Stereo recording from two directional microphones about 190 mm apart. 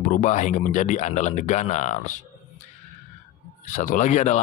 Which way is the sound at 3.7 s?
40° left (ahead or behind).